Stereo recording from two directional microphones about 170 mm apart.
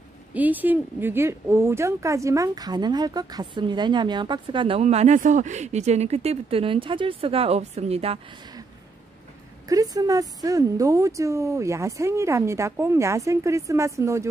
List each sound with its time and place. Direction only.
0.3 s speech: 10° right (ahead or behind); by 8.2 s 35° right (ahead or behind)
9.7 s speech: 20° right (ahead or behind)